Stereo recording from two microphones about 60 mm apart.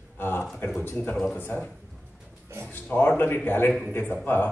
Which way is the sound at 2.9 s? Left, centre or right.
Left.